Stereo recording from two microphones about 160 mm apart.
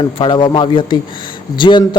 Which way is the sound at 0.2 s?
30° left (ahead or behind).